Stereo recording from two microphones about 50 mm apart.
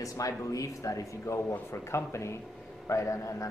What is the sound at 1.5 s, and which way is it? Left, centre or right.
Speech, left.